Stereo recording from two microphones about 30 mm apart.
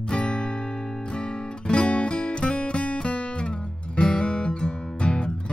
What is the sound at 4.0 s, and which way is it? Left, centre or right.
Music, left.